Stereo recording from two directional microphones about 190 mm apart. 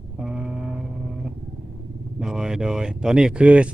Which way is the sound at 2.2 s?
5° right (ahead or behind).